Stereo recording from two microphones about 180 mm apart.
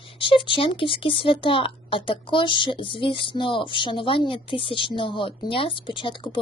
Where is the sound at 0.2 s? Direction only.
30° left (ahead or behind).